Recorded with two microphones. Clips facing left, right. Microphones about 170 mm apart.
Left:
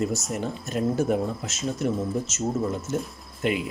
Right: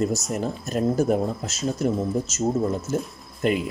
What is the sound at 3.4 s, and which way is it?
Speech, 40° right (ahead or behind).